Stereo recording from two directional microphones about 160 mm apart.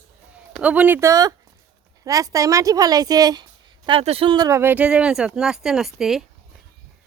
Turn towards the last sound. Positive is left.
turn(degrees=0)  # may be behind; listen again after turning